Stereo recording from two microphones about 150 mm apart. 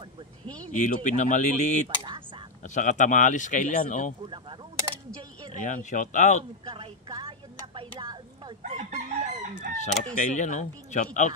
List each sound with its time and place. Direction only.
0.7 s speech: 55° left (ahead or behind)
5.5 s speech: 55° left (ahead or behind)
6.6 s a sound: 35° right (ahead or behind)
8.6 s chicken: 50° right (ahead or behind)
10.1 s speech: 55° left (ahead or behind)